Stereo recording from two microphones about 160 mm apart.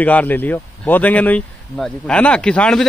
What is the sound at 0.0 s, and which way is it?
Speech, 10° left (ahead or behind).